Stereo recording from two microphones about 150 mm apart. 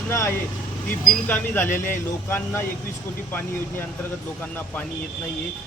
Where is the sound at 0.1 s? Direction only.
20° left (ahead or behind).